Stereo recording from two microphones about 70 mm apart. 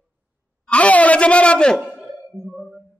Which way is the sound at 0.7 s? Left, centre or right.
Centre.